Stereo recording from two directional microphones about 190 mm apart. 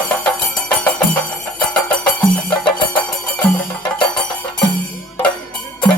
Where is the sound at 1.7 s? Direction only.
5° left (ahead or behind).